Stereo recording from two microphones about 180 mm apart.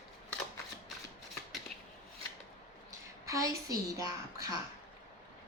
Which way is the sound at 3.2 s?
15° right (ahead or behind).